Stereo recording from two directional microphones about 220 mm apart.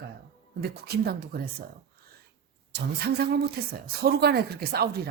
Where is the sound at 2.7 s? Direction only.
50° right (ahead or behind).